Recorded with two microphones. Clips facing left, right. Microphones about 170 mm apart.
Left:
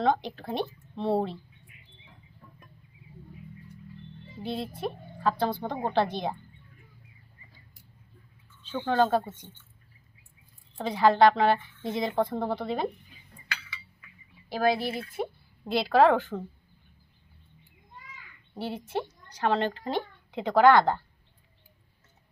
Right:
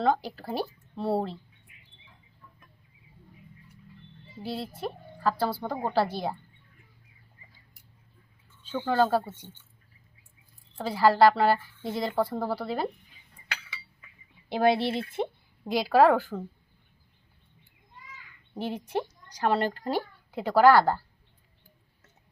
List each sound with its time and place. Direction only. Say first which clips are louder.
0.0 s a woman's voice: even; 5° right (ahead or behind)
4.4 s a woman's voice: left 1 dB; 5° right (ahead or behind)
8.6 s speech: even; 10° right (ahead or behind)
10.8 s a woman's voice: even; 5° right (ahead or behind)
14.5 s speech: right 2 dB; 25° right (ahead or behind)
15.6 s speech: right 1 dB; 10° right (ahead or behind)
18.5 s speech: right 1 dB; 15° right (ahead or behind)